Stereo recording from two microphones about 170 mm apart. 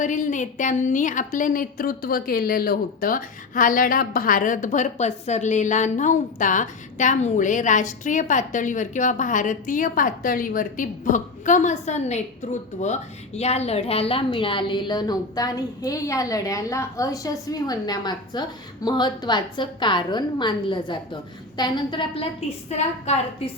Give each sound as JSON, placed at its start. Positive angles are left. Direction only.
{"t": 0.0, "sound": "a woman's voice", "side_deg": 45}